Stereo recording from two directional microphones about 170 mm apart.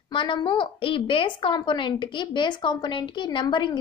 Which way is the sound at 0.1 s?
30° left (ahead or behind).